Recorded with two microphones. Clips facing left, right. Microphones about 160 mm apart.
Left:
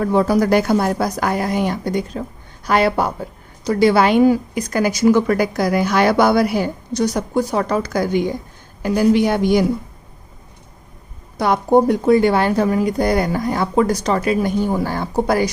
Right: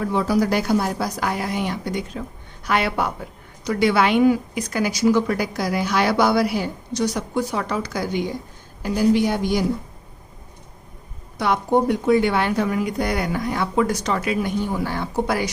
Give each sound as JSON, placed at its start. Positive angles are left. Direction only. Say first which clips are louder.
{"t": 0.0, "sound": "a woman's voice", "louder": "left 4 dB", "side_deg": 50}
{"t": 8.8, "sound": "a woman's voice", "louder": "left 3 dB", "side_deg": 65}
{"t": 11.3, "sound": "speech", "louder": "left 5 dB", "side_deg": 40}